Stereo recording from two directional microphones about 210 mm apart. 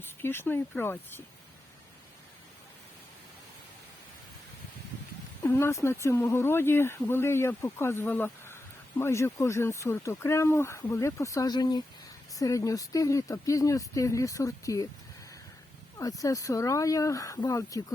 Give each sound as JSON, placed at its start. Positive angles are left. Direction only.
{"t": 0.0, "sound": "speech", "side_deg": 10}
{"t": 5.4, "sound": "speech", "side_deg": 10}
{"t": 16.0, "sound": "speech", "side_deg": 15}